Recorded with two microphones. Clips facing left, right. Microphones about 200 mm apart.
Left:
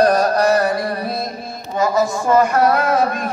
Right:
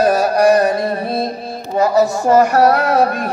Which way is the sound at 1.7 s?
35° right (ahead or behind).